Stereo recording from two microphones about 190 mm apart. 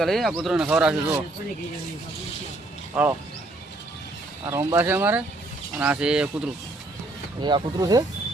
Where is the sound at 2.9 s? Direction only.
10° right (ahead or behind).